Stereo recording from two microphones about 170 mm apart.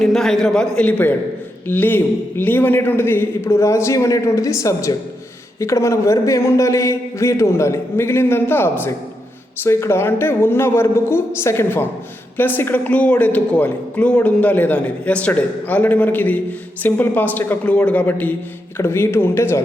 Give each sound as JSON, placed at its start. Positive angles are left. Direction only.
{"t": 0.0, "sound": "a man's voice", "side_deg": 0}